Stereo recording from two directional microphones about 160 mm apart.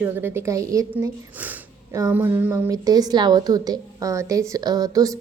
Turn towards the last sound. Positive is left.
turn(degrees=-20)  # may be behind; listen again after turning